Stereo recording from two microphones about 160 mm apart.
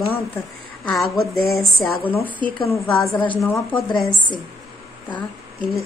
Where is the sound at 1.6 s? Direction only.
10° left (ahead or behind).